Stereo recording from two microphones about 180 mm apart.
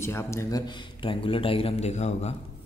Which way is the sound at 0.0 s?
15° left (ahead or behind).